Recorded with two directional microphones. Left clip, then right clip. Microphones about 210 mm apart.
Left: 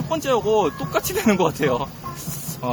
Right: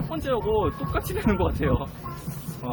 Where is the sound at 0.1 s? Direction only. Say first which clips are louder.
Left 6 dB; 55° left (ahead or behind).